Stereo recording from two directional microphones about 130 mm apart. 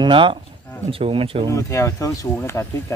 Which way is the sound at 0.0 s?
40° right (ahead or behind).